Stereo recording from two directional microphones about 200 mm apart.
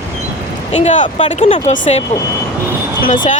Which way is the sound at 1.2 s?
30° left (ahead or behind).